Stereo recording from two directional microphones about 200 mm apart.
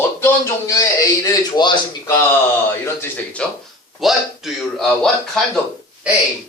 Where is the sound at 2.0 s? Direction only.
10° left (ahead or behind).